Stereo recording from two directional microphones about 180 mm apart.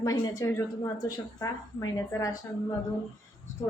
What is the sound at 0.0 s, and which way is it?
A woman's voice, 15° left (ahead or behind).